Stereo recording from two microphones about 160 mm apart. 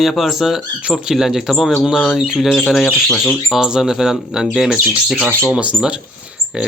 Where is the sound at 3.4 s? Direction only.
Centre (ahead or behind).